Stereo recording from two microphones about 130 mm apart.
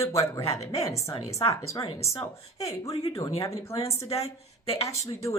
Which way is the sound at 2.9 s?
45° left (ahead or behind).